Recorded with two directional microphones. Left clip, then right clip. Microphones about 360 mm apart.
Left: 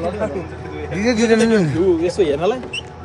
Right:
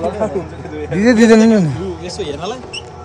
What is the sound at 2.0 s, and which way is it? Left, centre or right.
Speech, centre.